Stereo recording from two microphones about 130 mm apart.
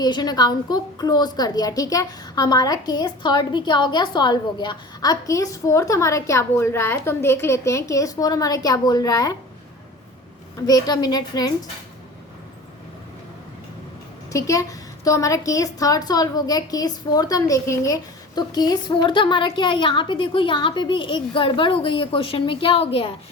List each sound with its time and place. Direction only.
0.0 s a woman's voice: 30° left (ahead or behind)
10.7 s a woman's voice: 30° left (ahead or behind)
14.3 s a woman's voice: 25° left (ahead or behind); by 23.1 s 50° left (ahead or behind)